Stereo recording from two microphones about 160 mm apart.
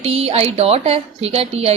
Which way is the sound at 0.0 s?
40° right (ahead or behind).